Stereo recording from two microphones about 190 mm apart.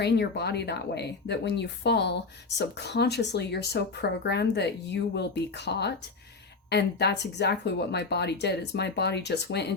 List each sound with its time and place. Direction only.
0.0 s speech: 60° left (ahead or behind)